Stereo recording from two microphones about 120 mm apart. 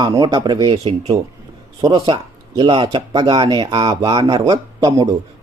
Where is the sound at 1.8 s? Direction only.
30° right (ahead or behind).